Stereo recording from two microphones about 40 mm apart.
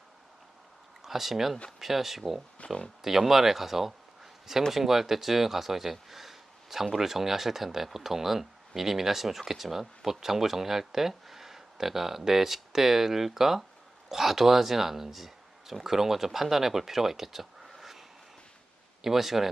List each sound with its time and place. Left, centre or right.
1.0 s speech: centre
2.6 s speech: left
3.0 s speech: centre
19.0 s speech: centre